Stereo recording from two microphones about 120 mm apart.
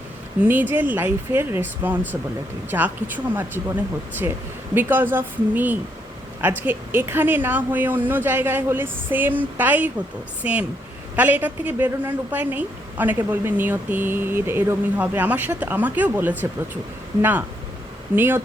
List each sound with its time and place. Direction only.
0.4 s a woman's voice: 15° right (ahead or behind)
18.1 s a woman's voice: 15° right (ahead or behind)